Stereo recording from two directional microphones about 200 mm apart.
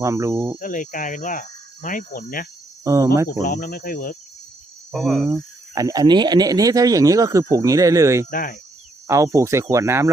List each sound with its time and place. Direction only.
0.0 s speech: 15° right (ahead or behind)
0.6 s speech: 40° left (ahead or behind)
2.8 s speech: 15° right (ahead or behind)
3.2 s speech: 45° left (ahead or behind)
4.9 s cricket: centre (ahead or behind)
5.2 s speech: 15° right (ahead or behind)
8.3 s speech: 45° left (ahead or behind)
9.0 s speech: 15° right (ahead or behind)